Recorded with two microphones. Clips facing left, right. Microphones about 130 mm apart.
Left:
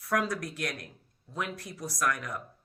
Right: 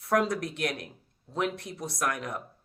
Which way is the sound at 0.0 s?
25° right (ahead or behind).